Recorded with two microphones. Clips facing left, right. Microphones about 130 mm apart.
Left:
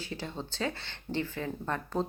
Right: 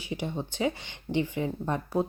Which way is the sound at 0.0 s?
15° right (ahead or behind).